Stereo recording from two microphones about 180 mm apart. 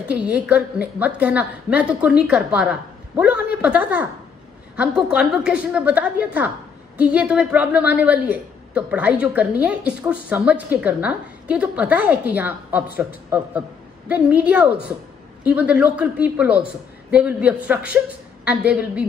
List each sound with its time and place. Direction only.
0.1 s a woman's voice: 10° right (ahead or behind)